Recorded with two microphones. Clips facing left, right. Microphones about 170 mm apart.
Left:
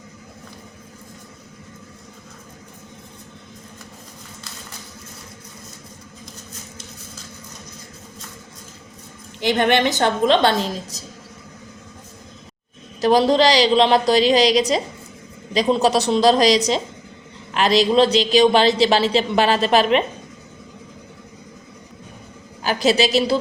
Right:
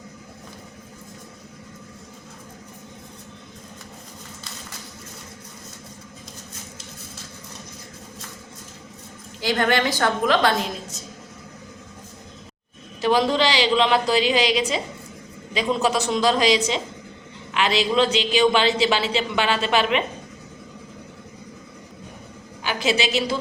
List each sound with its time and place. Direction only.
9.4 s a woman's voice: 20° left (ahead or behind)
13.0 s a man's voice: 35° left (ahead or behind)
22.6 s a man's voice: 40° left (ahead or behind)